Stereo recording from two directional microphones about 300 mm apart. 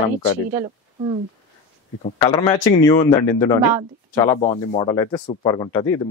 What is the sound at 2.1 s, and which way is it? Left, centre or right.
A man's voice, centre.